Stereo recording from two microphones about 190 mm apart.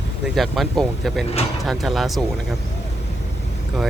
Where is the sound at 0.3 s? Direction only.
Centre (ahead or behind).